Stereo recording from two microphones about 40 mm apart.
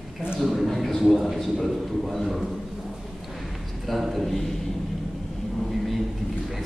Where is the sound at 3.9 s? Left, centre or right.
Centre.